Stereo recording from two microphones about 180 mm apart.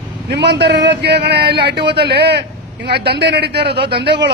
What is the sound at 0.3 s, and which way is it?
A man's voice, 65° right (ahead or behind).